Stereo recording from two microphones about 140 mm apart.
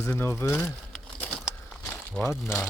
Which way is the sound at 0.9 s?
5° left (ahead or behind).